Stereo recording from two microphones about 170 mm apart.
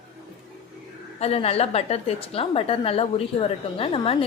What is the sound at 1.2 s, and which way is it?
A woman's voice, 35° left (ahead or behind).